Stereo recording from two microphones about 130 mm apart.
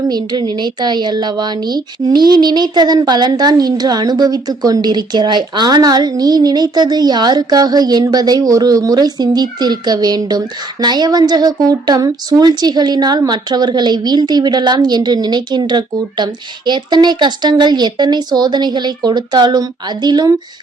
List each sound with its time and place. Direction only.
0.1 s a woman's voice: 30° right (ahead or behind)